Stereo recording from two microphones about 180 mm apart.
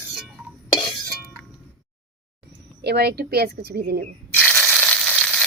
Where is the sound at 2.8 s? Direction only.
65° right (ahead or behind).